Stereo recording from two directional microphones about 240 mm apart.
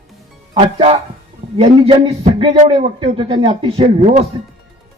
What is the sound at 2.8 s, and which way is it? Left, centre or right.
Speech, right.